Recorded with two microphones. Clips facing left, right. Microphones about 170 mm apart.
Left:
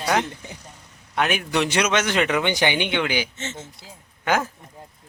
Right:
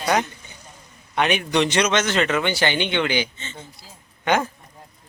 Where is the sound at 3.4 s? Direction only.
85° left.